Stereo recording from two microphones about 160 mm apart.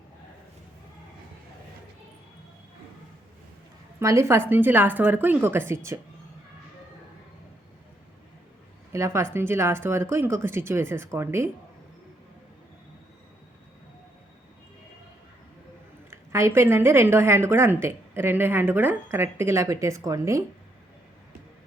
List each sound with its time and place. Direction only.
4.0 s a woman's voice: 15° right (ahead or behind)
8.9 s a woman's voice: 20° right (ahead or behind)
16.0 s a woman's voice: 15° right (ahead or behind)